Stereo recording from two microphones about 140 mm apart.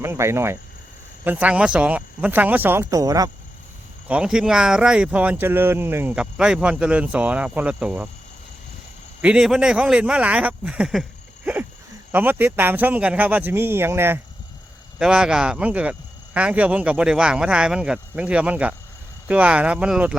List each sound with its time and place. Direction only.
0.0 s speech: 20° right (ahead or behind)
4.1 s speech: 5° right (ahead or behind)
9.2 s speech: 5° right (ahead or behind)
12.1 s speech: 15° right (ahead or behind)
14.9 s speech: 5° right (ahead or behind)